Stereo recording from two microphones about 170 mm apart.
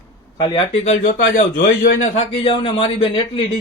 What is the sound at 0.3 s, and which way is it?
Speech, 25° left (ahead or behind).